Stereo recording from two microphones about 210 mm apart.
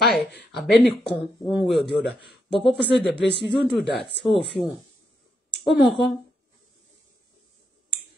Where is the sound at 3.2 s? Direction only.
55° left (ahead or behind).